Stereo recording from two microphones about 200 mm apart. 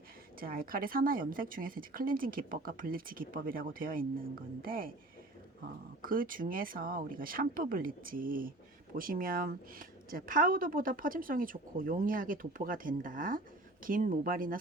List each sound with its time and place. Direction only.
0.3 s speech: 45° right (ahead or behind)
6.0 s speech: 45° right (ahead or behind)